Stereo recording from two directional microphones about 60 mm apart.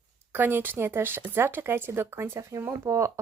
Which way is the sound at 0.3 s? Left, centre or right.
Right.